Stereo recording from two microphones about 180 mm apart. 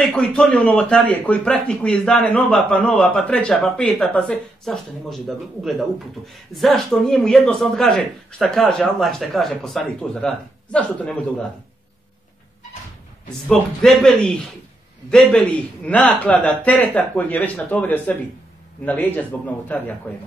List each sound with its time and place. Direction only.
0.0 s a man's voice: 5° left (ahead or behind)
13.5 s a man's voice: centre (ahead or behind)